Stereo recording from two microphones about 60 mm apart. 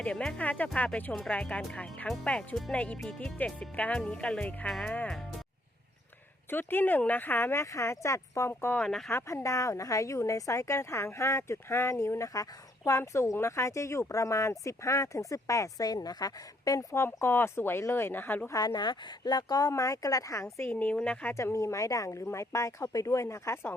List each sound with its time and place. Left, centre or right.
0.0 s speech: centre
4.7 s speech: centre
6.5 s a woman's voice: left
7.6 s a woman's voice: left
8.8 s speech: centre
9.0 s a woman's voice: left
12.3 s speech: left
13.0 s a woman's voice: left
16.9 s a woman's voice: left
19.5 s a woman's voice: left
20.7 s speech: left
21.3 s a woman's voice: left